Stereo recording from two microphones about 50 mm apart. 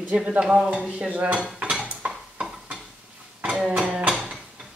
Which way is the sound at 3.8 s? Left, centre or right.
Centre.